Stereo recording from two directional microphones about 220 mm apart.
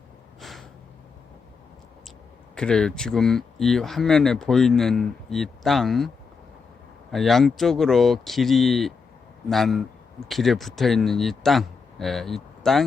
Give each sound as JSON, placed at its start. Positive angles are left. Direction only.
{"t": 2.6, "sound": "speech", "side_deg": 5}
{"t": 7.1, "sound": "speech", "side_deg": 0}